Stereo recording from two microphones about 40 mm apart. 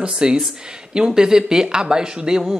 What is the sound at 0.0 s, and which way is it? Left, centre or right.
Speech, right.